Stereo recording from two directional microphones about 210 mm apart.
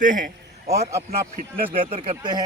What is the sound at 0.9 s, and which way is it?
Speech, 15° right (ahead or behind).